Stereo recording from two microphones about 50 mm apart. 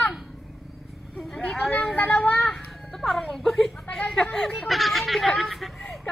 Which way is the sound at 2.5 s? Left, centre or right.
Centre.